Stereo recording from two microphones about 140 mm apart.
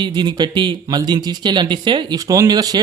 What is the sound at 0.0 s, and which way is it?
Speech, 30° right (ahead or behind).